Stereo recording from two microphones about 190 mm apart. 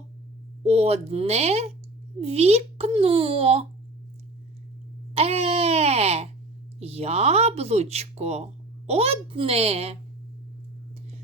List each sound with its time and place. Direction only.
0.6 s speech: 35° right (ahead or behind)
5.1 s a sound: 30° right (ahead or behind)
6.7 s speech: 30° right (ahead or behind)